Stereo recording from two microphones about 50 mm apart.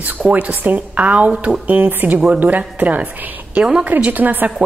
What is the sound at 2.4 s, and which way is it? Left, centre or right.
A woman's voice, right.